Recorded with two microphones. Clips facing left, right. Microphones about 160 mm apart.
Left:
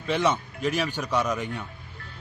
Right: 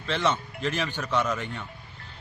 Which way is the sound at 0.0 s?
10° left (ahead or behind).